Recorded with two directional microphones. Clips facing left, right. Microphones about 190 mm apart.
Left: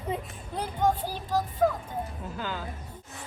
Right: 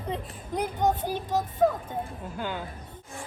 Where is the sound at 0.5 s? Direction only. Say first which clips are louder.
Right 1 dB; 20° right (ahead or behind).